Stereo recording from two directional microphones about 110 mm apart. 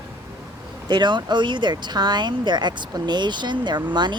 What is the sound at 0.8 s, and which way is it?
Speech, 45° right (ahead or behind).